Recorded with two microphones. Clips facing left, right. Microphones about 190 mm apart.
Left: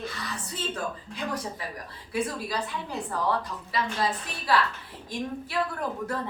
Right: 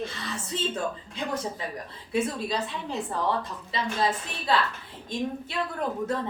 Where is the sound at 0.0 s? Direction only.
25° right (ahead or behind).